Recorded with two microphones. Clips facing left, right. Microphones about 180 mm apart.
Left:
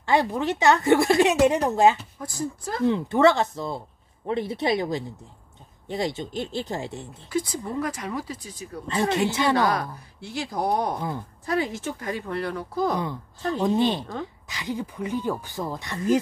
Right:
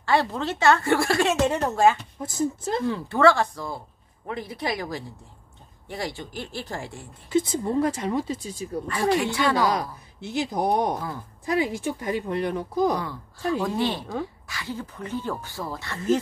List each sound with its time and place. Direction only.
0.0 s speech: 15° left (ahead or behind)
2.1 s speech: 20° right (ahead or behind)
2.9 s speech: 20° left (ahead or behind)
7.2 s speech: 25° right (ahead or behind)
8.8 s speech: 20° left (ahead or behind)
9.8 s speech: 20° right (ahead or behind)
13.5 s speech: 20° left (ahead or behind)